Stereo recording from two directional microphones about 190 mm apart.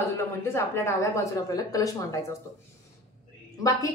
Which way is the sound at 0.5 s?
15° left (ahead or behind).